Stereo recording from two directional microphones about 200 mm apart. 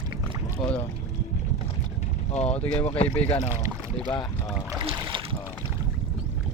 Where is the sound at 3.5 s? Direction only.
15° right (ahead or behind).